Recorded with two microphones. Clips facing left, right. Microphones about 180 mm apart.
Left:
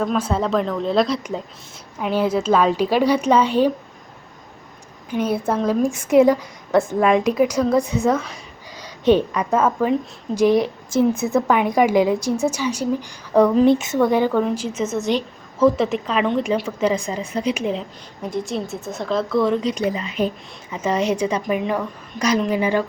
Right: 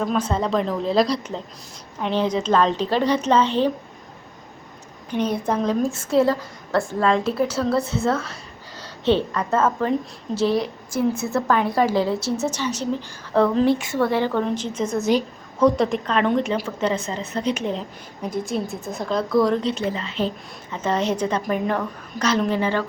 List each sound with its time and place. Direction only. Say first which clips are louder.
0.0 s a woman's voice: left 2 dB; 5° left (ahead or behind)
5.1 s a woman's voice: left 1 dB; 5° left (ahead or behind)
19.6 s a woman's voice: left 2 dB; 10° left (ahead or behind)